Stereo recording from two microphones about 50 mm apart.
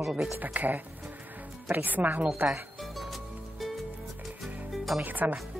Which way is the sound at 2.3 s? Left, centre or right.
Right.